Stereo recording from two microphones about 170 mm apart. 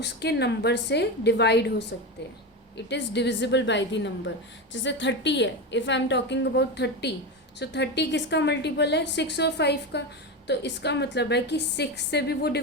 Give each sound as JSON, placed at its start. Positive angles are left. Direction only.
{"t": 0.0, "sound": "a woman's voice", "side_deg": 80}